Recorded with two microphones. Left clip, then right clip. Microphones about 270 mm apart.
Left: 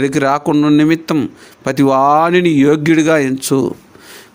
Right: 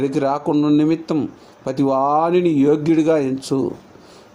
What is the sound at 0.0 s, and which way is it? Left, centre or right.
Speech, left.